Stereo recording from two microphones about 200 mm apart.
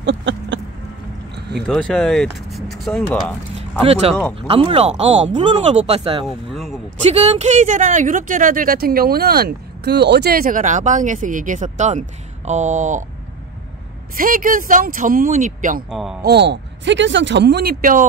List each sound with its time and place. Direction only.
0.0 s a sound: 65° right (ahead or behind)
1.7 s speech: centre (ahead or behind)
3.8 s speech: 30° right (ahead or behind)
6.2 s a sound: centre (ahead or behind)
7.0 s speech: 30° right (ahead or behind)
14.1 s speech: 45° right (ahead or behind)
15.9 s speech: centre (ahead or behind)
16.2 s speech: 55° right (ahead or behind)